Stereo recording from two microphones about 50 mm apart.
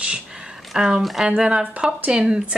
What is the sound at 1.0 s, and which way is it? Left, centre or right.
Speech, centre.